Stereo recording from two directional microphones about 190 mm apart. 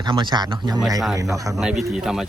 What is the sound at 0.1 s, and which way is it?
Speech, 25° right (ahead or behind).